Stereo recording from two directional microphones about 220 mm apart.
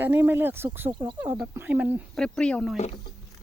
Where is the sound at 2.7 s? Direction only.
25° left (ahead or behind).